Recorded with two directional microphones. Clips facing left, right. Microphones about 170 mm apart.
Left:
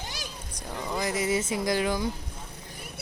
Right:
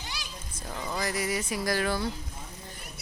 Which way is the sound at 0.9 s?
20° left (ahead or behind).